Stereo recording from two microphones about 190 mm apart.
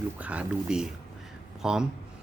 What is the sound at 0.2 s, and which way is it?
Speech, 5° right (ahead or behind).